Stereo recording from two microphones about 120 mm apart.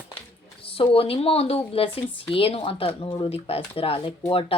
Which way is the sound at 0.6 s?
50° left (ahead or behind).